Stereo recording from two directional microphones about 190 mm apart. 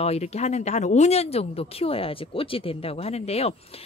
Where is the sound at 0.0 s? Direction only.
35° left (ahead or behind).